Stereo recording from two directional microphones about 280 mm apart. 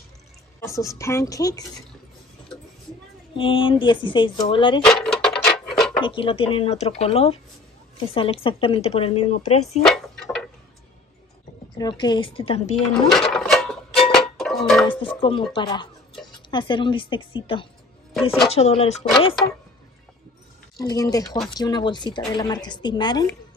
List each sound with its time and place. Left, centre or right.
0.6 s speech: centre
3.3 s speech: centre
4.8 s a sound: centre
5.9 s speech: centre
9.8 s a sound: centre
11.7 s speech: centre
13.3 s music: centre
14.9 s speech: centre
18.1 s a woman's voice: centre
18.5 s speech: left
20.7 s speech: centre